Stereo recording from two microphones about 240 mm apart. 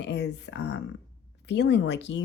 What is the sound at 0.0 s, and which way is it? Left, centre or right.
Speech, left.